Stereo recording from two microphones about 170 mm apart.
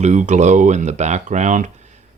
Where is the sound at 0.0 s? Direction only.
45° right (ahead or behind).